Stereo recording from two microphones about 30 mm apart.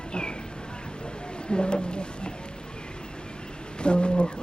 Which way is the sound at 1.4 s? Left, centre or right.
Left.